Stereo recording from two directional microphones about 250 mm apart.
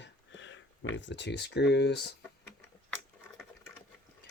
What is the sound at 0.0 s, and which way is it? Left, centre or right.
Speech, left.